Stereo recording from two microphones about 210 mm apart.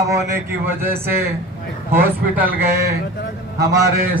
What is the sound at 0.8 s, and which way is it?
Speech, 10° right (ahead or behind).